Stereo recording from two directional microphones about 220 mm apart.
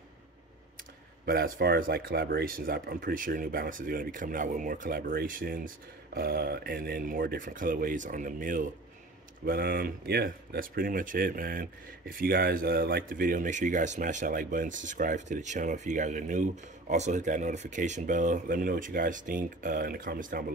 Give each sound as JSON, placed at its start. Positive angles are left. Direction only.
{"t": 1.2, "sound": "speech", "side_deg": -45}